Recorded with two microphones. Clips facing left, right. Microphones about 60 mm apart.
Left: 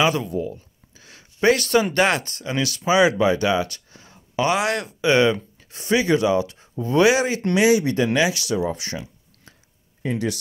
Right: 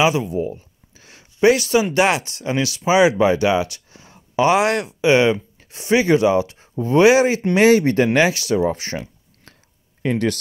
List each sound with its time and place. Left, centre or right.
0.0 s speech: centre
0.4 s a sound: right
1.4 s speech: centre
2.4 s speech: right
7.5 s speech: right
10.0 s speech: right